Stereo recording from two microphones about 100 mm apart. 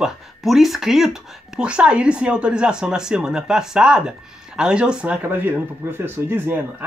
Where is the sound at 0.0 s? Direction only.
Centre (ahead or behind).